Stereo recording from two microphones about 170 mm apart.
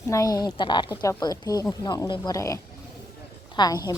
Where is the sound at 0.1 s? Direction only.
20° left (ahead or behind).